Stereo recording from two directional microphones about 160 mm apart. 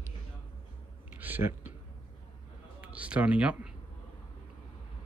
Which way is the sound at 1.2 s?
15° right (ahead or behind).